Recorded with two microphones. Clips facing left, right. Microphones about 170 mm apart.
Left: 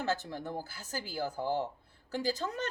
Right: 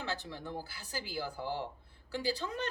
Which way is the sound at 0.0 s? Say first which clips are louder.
Left 5 dB; 45° left (ahead or behind).